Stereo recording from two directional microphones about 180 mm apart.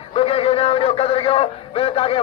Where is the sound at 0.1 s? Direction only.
35° left (ahead or behind).